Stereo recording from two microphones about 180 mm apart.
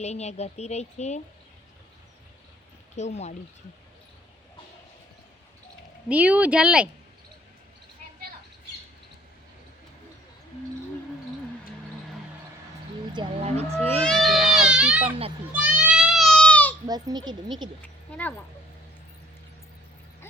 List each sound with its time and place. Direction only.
0.0 s speech: 35° left (ahead or behind)
2.9 s speech: 40° left (ahead or behind)
6.1 s speech: 10° right (ahead or behind)
13.1 s speech: 35° right (ahead or behind)
14.0 s baby cry: centre (ahead or behind)
15.5 s a sound: 5° right (ahead or behind); by 16.7 s 10° left (ahead or behind)
16.8 s a child's voice: 20° right (ahead or behind)
17.8 s a woman's voice: 10° left (ahead or behind)